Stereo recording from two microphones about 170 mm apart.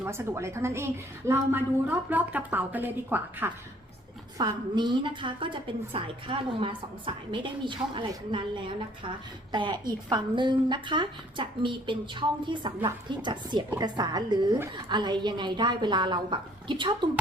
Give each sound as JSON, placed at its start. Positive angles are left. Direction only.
{"t": 0.0, "sound": "a woman's voice", "side_deg": -15}
{"t": 4.4, "sound": "a woman's voice", "side_deg": -25}